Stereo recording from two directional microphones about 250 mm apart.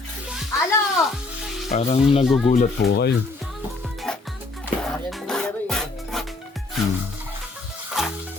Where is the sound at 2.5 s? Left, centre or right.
Left.